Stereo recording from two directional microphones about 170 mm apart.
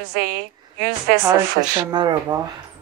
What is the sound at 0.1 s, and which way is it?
A woman's voice, 65° right (ahead or behind).